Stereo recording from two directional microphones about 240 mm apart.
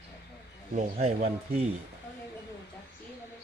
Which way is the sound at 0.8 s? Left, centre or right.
Right.